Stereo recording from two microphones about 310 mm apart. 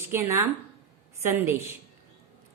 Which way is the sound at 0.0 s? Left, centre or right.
Centre.